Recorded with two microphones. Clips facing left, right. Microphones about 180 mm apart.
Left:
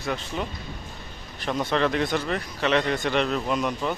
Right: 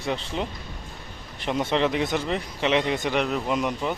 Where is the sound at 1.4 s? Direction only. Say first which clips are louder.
Right 1 dB; 20° right (ahead or behind).